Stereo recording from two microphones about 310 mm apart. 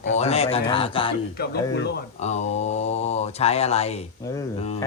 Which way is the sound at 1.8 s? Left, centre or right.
Left.